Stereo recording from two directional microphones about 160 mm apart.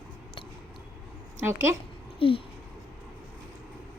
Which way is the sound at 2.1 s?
35° left (ahead or behind).